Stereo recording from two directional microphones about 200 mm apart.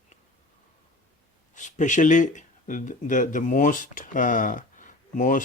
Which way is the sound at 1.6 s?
35° left (ahead or behind).